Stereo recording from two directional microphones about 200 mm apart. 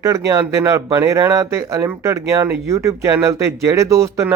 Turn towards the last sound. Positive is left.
turn(degrees=-15)  # may be behind; listen again after turning